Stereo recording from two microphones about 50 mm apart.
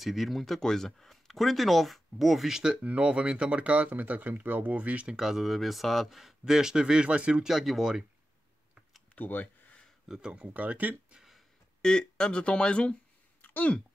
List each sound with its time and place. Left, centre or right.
0.0 s speech: centre
2.8 s speech: right
5.1 s speech: centre; by 7.4 s right
7.4 s speech: centre
9.1 s a sound: left
10.0 s speech: centre
10.5 s speech: right
11.1 s a sound: centre
11.8 s speech: centre
13.4 s a sound: left